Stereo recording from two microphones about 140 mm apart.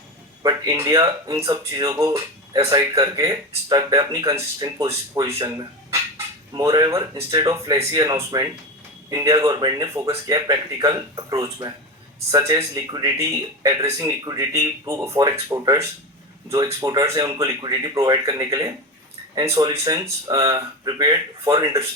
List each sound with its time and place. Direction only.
0.4 s speech: 25° right (ahead or behind)